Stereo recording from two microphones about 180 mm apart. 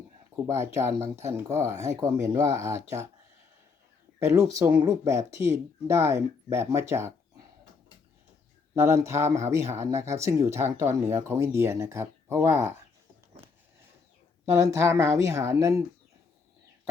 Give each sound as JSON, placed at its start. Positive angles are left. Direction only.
{"t": 0.4, "sound": "speech", "side_deg": -15}
{"t": 4.2, "sound": "speech", "side_deg": -20}
{"t": 8.7, "sound": "speech", "side_deg": -15}
{"t": 14.5, "sound": "speech", "side_deg": -15}